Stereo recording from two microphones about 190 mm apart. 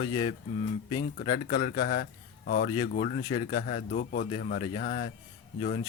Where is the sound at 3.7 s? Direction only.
45° left (ahead or behind).